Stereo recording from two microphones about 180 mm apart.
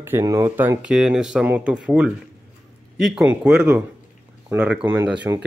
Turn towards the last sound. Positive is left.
turn(degrees=-15)  # may be behind; listen again after turning